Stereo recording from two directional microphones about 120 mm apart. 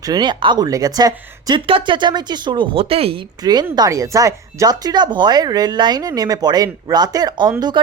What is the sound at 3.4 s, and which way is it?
Speech, 35° right (ahead or behind).